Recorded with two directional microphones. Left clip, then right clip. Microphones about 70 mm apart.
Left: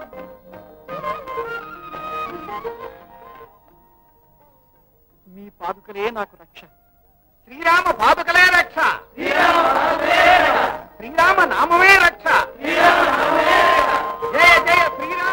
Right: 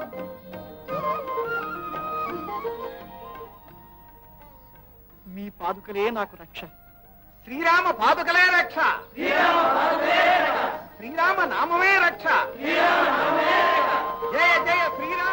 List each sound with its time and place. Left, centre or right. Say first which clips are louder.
0.0 s music: right 1 dB; right
5.3 s a man's voice: left 1 dB; right
7.4 s a sound: left 4 dB; right